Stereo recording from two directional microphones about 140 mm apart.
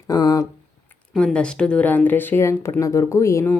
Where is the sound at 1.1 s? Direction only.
5° left (ahead or behind).